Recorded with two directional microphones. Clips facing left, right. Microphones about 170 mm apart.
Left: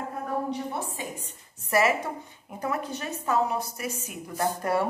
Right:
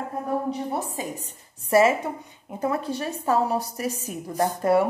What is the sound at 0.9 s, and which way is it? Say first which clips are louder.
A woman's voice: right 4 dB; 40° right (ahead or behind).